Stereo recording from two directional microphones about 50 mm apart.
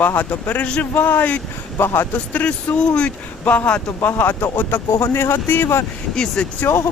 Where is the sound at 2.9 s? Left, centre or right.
Left.